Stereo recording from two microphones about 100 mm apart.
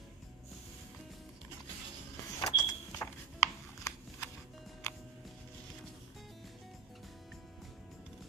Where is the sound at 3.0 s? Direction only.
30° left (ahead or behind).